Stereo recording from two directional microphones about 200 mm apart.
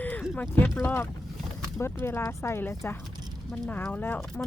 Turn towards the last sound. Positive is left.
turn(degrees=10)  # may be behind; listen again after turning